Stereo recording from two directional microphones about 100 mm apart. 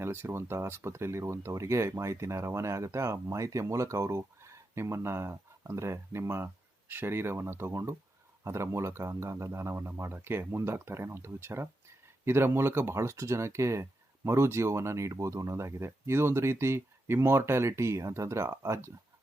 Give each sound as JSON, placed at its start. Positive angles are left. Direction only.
{"t": 0.0, "sound": "speech", "side_deg": -25}